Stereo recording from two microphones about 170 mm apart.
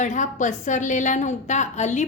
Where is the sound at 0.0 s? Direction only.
45° left (ahead or behind).